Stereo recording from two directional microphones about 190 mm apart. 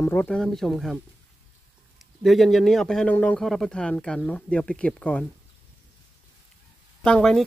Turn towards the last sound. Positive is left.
turn(degrees=5)  # may be behind; listen again after turning